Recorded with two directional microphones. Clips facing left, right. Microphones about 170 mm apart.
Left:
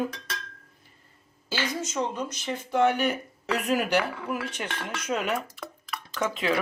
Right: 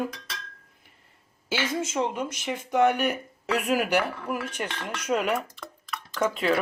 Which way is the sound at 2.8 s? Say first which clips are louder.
Right 1 dB; 10° right (ahead or behind).